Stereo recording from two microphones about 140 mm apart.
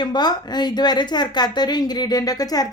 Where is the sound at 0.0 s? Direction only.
30° left (ahead or behind).